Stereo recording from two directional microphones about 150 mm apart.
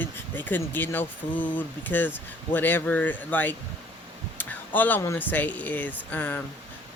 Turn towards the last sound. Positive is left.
turn(degrees=10)  # may be behind; listen again after turning